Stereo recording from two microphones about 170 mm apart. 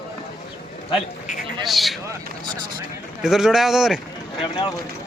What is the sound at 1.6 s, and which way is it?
Speech, centre (ahead or behind).